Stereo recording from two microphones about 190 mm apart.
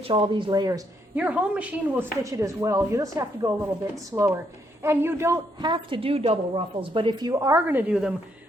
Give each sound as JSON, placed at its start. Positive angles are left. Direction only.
{"t": 0.0, "sound": "a woman's voice", "side_deg": -25}
{"t": 1.1, "sound": "a woman's voice", "side_deg": -10}